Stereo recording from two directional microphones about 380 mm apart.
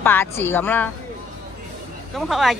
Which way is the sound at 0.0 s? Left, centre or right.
Centre.